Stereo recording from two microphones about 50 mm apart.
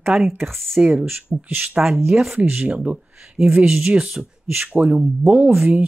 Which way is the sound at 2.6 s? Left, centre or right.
Right.